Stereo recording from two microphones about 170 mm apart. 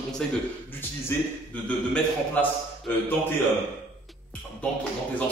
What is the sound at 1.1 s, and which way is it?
Speech, 15° left (ahead or behind).